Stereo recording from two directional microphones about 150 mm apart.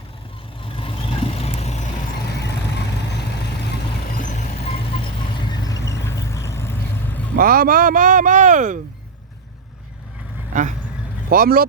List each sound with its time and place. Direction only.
0.8 s vehicle: 35° left (ahead or behind)
2.3 s vehicle: 90° left
4.2 s vehicle: 50° left (ahead or behind)
5.4 s vehicle: 30° left (ahead or behind)
6.1 s vehicle: 20° left (ahead or behind)
7.3 s speech: 75° right (ahead or behind); by 8.8 s 60° right (ahead or behind)
10.5 s speech: 55° right (ahead or behind)
11.3 s speech: 75° right (ahead or behind)